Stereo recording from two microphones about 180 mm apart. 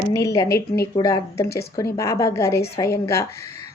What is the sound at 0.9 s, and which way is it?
A woman's voice, 20° left (ahead or behind).